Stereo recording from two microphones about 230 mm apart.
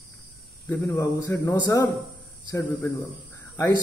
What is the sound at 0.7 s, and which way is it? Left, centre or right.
Speech, centre.